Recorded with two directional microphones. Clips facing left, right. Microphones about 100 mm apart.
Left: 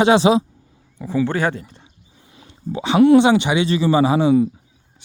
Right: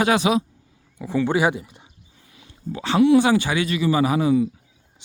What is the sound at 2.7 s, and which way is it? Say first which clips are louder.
Speech: left 4 dB; 20° left (ahead or behind).